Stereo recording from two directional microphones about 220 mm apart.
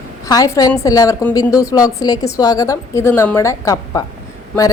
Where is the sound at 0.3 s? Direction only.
15° left (ahead or behind).